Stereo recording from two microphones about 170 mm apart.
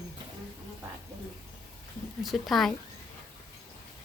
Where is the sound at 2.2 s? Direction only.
Centre (ahead or behind).